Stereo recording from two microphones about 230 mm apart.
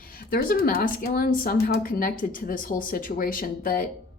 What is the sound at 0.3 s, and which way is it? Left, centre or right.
Speech, left.